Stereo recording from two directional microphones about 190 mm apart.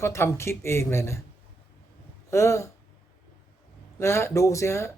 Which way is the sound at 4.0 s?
15° left (ahead or behind).